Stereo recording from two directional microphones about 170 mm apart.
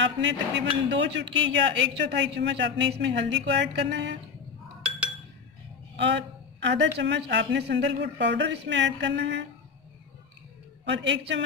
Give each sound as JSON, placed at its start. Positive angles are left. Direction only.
{"t": 0.0, "sound": "speech", "side_deg": -90}
{"t": 5.9, "sound": "speech", "side_deg": -90}
{"t": 10.9, "sound": "speech", "side_deg": -90}